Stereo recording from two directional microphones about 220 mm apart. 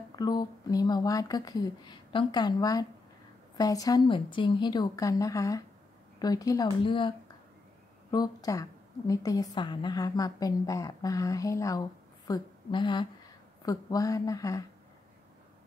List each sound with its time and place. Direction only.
0.1 s a woman's voice: 20° left (ahead or behind)